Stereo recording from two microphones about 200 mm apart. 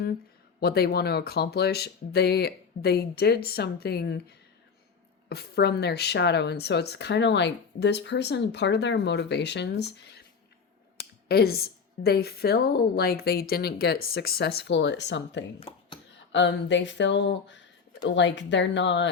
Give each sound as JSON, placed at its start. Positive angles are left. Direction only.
{"t": 0.6, "sound": "a woman's voice", "side_deg": 50}
{"t": 11.3, "sound": "a woman's voice", "side_deg": 50}